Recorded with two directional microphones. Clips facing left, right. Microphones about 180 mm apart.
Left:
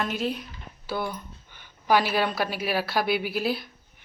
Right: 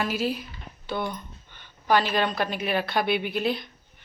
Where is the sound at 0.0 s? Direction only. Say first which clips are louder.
Right 1 dB; 5° right (ahead or behind).